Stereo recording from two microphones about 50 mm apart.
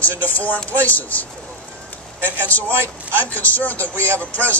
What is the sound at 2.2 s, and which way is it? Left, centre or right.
Speech, left.